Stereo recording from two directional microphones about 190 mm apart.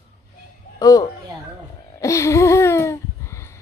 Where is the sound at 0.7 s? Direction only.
20° left (ahead or behind).